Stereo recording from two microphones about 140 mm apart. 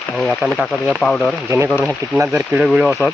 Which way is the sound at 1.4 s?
20° right (ahead or behind).